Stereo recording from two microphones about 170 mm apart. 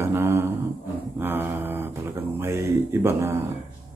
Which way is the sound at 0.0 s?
15° right (ahead or behind).